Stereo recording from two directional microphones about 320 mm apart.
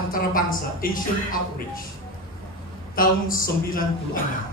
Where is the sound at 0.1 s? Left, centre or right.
Left.